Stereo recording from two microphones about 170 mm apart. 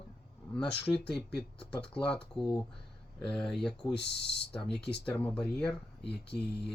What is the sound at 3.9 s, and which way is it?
Speech, 80° left.